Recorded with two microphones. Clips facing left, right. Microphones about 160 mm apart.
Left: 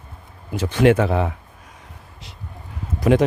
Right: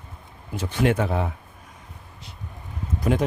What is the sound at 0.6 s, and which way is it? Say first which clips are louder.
Speech: left 6 dB; 90° left.